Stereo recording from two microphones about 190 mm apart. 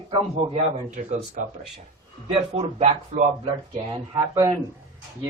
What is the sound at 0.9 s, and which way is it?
Speech, 40° right (ahead or behind).